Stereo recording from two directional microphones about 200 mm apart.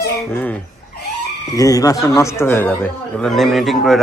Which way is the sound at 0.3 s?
10° left (ahead or behind).